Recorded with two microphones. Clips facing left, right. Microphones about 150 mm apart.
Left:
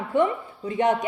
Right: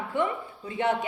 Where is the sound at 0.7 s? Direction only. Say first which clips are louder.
Left 5 dB; 20° left (ahead or behind).